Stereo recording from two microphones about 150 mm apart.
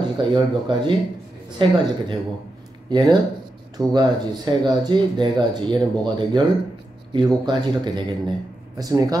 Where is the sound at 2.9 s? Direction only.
30° right (ahead or behind).